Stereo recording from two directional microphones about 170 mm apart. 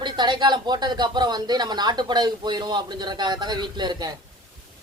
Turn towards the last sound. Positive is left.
turn(degrees=-25)  # may be behind; listen again after turning